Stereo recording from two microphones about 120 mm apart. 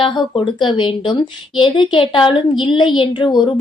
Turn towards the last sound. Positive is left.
turn(degrees=40)  # may be behind; listen again after turning